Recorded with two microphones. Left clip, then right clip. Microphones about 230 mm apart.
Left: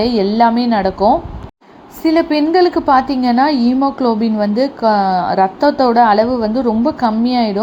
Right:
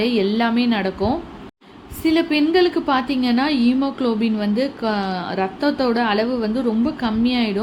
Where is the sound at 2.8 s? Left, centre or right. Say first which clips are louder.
Left 7 dB; centre.